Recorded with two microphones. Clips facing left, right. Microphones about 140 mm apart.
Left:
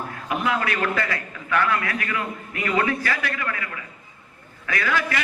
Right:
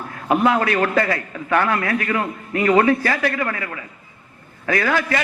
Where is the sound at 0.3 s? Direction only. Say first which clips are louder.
Right 7 dB; 35° right (ahead or behind).